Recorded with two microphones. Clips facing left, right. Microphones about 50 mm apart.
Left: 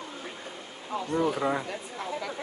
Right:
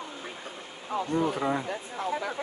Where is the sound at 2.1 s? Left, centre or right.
Right.